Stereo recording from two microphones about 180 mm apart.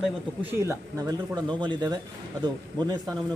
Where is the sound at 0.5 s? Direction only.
15° right (ahead or behind).